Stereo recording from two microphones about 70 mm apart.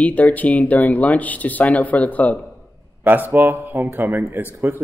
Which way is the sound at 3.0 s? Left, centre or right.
Right.